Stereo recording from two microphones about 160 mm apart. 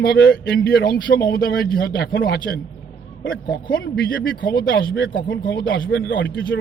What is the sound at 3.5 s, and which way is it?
A man's voice, 75° left (ahead or behind).